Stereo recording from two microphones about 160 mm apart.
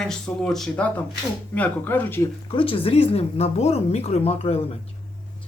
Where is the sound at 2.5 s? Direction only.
35° left (ahead or behind).